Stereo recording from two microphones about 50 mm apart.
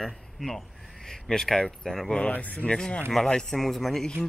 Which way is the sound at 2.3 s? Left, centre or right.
Left.